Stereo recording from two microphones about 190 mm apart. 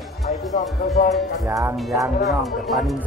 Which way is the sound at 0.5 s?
40° left (ahead or behind).